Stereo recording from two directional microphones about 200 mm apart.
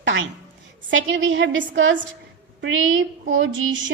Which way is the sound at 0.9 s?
70° right (ahead or behind).